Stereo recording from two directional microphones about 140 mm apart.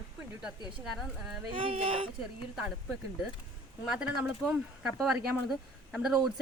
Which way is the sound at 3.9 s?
5° right (ahead or behind).